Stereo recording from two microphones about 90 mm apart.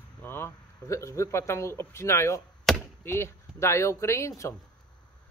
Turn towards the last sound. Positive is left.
turn(degrees=30)  # may be behind; listen again after turning